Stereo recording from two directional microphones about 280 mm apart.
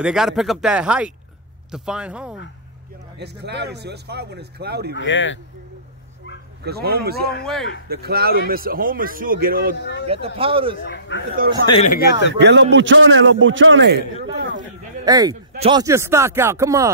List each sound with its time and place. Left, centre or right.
0.0 s speech: centre
3.2 s a man's voice: right
4.9 s speech: left
6.6 s a man's voice: right
10.0 s speech: right
10.9 s speech: left
11.6 s speech: centre
11.9 s speech: left
12.4 s a man's voice: right
15.0 s speech: centre